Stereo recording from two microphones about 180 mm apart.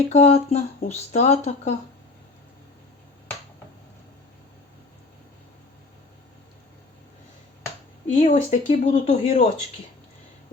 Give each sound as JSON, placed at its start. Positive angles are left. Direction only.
{"t": 0.1, "sound": "speech", "side_deg": 35}
{"t": 8.1, "sound": "speech", "side_deg": 40}